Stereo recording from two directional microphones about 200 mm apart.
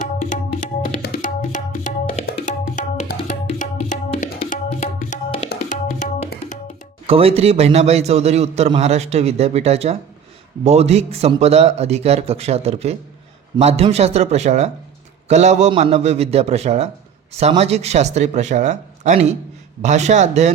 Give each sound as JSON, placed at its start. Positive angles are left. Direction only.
{"t": 0.0, "sound": "tabla", "side_deg": 40}
{"t": 1.0, "sound": "music", "side_deg": 40}
{"t": 4.1, "sound": "tabla", "side_deg": 30}
{"t": 4.4, "sound": "tabla", "side_deg": 40}
{"t": 7.1, "sound": "a man's voice", "side_deg": -30}